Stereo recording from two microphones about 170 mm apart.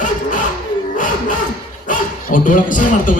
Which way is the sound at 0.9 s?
50° left (ahead or behind).